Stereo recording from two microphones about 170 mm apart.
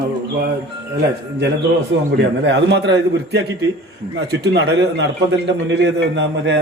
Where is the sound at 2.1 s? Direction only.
90° right.